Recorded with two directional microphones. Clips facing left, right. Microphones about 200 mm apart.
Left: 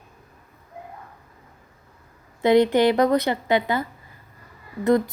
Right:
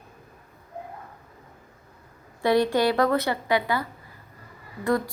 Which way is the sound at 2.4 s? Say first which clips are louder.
Left 4 dB; 20° left (ahead or behind).